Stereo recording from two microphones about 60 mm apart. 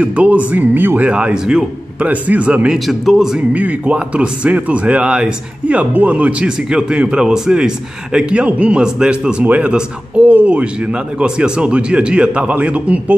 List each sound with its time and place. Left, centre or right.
0.0 s speech: right
0.5 s speech: right
1.3 s a man's voice: centre
2.0 s speech: right
2.7 s speech: centre
3.3 s a man's voice: right